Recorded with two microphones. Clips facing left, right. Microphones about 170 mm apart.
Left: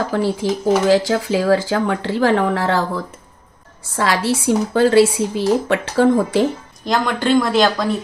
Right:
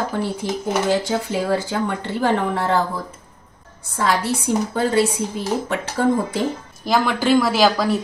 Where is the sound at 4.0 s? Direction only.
90° left.